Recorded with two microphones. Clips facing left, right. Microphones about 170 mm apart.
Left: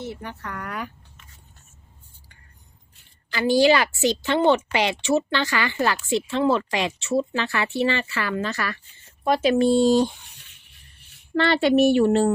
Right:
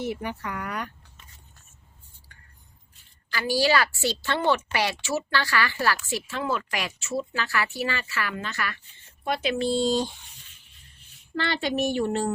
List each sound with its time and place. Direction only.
0.0 s speech: 15° right (ahead or behind)
3.3 s a woman's voice: 20° left (ahead or behind); by 12.3 s 70° left (ahead or behind)